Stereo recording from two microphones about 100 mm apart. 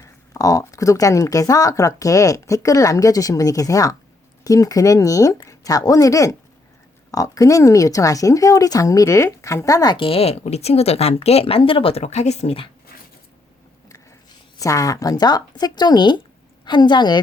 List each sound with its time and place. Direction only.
0.0 s speech: 35° left (ahead or behind)
10.0 s speech: 80° left
14.6 s a woman's voice: 35° left (ahead or behind)